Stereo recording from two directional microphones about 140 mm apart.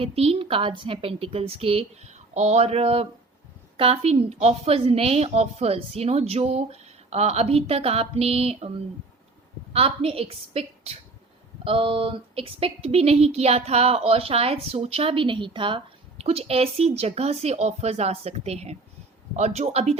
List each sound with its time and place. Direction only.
0.0 s speech: 45° right (ahead or behind)
9.7 s speech: 45° right (ahead or behind)